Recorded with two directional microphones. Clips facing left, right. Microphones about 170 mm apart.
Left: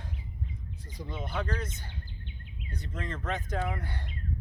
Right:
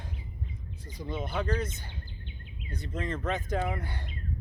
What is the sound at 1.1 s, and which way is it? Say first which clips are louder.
Speech: right 2 dB; 10° right (ahead or behind).